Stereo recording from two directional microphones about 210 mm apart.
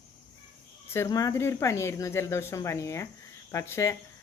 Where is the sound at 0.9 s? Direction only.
15° left (ahead or behind).